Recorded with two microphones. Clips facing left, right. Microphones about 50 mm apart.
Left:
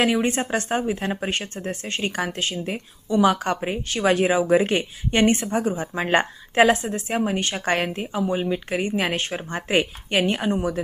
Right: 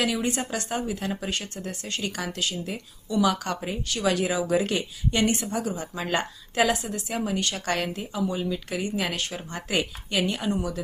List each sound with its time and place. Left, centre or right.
0.0 s speech: left